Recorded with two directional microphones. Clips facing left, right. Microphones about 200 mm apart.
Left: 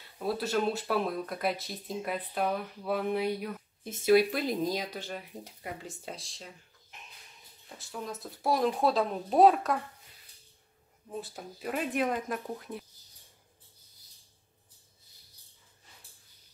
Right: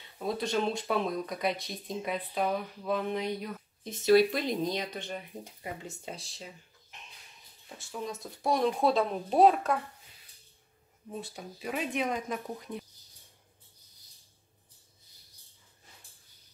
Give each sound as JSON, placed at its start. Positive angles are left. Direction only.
{"t": 0.2, "sound": "speech", "side_deg": 5}
{"t": 11.1, "sound": "speech", "side_deg": 0}